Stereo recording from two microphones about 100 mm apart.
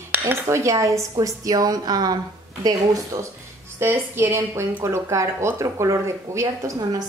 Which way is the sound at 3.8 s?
20° right (ahead or behind).